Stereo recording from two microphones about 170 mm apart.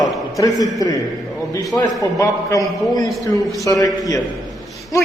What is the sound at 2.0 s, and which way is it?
A man's voice, 20° left (ahead or behind).